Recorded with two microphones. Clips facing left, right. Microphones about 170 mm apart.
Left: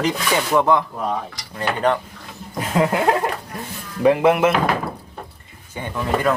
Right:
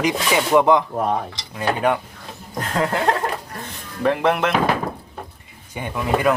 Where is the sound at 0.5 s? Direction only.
15° right (ahead or behind).